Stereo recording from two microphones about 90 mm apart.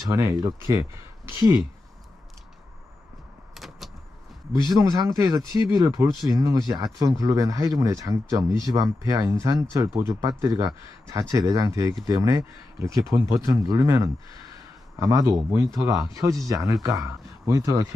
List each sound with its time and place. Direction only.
0.0 s speech: 35° right (ahead or behind)
3.5 s vehicle: centre (ahead or behind)
4.7 s speech: 40° right (ahead or behind)